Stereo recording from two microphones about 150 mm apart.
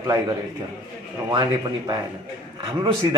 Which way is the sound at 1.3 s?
25° right (ahead or behind).